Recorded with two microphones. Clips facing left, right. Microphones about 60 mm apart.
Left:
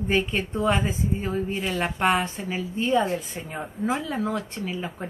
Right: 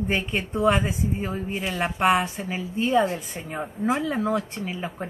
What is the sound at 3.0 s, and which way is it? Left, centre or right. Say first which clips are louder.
Speech: right 1 dB; centre.